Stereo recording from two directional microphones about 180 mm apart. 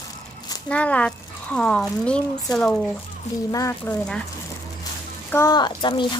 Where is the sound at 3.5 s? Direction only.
15° left (ahead or behind).